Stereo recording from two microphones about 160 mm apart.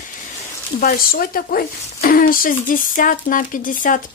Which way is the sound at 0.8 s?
65° left (ahead or behind).